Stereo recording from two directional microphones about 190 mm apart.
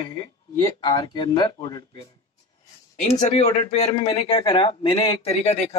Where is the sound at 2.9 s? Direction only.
40° left (ahead or behind).